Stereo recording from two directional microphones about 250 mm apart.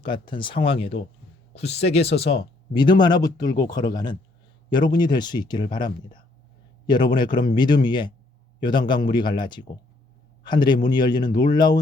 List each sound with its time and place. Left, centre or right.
0.0 s speech: centre